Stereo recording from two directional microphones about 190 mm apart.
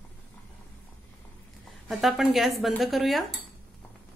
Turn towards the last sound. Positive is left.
turn(degrees=0)  # may be behind; listen again after turning